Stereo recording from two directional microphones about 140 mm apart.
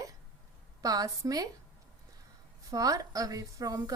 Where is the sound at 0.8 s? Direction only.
25° right (ahead or behind).